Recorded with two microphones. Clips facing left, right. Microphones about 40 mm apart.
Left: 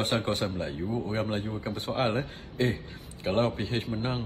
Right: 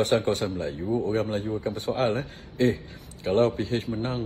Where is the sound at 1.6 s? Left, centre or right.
Left.